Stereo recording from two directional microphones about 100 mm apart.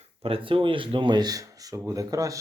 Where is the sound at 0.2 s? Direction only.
65° right (ahead or behind).